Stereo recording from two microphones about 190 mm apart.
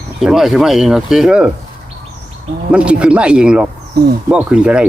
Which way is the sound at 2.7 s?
5° right (ahead or behind).